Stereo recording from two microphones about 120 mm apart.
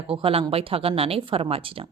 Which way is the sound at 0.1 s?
50° right (ahead or behind).